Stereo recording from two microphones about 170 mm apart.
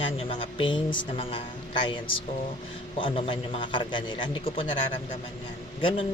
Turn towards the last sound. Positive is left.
turn(degrees=30)  # may be behind; listen again after turning